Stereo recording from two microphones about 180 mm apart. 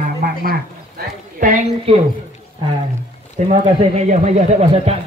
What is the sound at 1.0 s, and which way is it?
Clip-clop, 50° right (ahead or behind).